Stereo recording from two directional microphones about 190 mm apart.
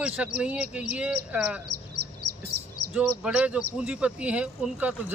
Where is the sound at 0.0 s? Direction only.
5° right (ahead or behind).